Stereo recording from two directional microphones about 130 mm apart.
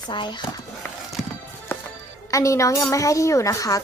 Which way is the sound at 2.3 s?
25° left (ahead or behind).